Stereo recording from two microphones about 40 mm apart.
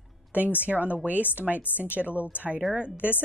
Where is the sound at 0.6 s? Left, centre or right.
Right.